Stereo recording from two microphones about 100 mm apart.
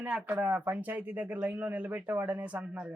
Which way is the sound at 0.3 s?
20° right (ahead or behind).